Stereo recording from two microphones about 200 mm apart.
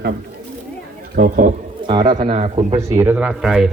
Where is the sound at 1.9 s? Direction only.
25° right (ahead or behind).